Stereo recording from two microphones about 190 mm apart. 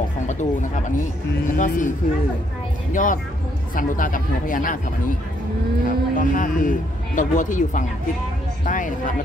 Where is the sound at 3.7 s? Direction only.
45° left (ahead or behind).